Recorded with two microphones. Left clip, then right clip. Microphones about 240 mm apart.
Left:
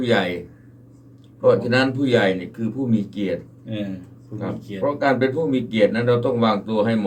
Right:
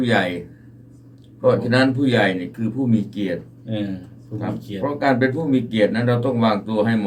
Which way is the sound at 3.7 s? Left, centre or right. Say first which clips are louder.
Right 3 dB; centre.